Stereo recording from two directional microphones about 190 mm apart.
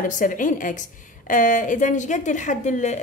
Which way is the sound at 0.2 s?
45° left (ahead or behind).